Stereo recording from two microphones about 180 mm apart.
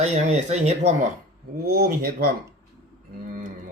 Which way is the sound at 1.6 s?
55° right (ahead or behind).